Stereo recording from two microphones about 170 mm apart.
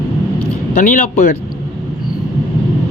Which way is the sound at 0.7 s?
50° left (ahead or behind).